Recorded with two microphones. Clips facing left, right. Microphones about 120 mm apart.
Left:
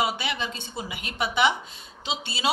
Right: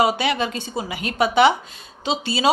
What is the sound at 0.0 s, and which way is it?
A woman's voice, 90° right.